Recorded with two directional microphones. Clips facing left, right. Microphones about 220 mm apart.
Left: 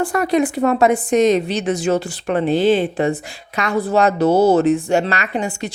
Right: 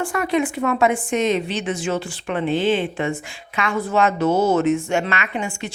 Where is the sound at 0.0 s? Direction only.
35° left (ahead or behind).